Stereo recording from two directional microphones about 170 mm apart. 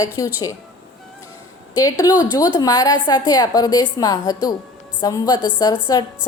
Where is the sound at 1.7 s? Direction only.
20° left (ahead or behind).